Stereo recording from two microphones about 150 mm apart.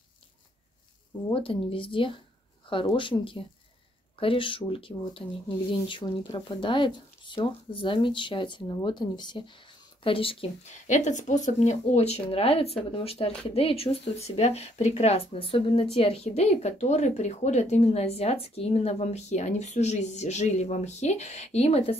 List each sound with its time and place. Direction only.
1.3 s speech: 35° left (ahead or behind)
10.7 s speech: 55° left (ahead or behind)